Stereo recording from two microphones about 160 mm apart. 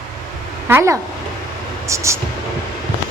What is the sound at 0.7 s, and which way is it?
Speech, 20° right (ahead or behind).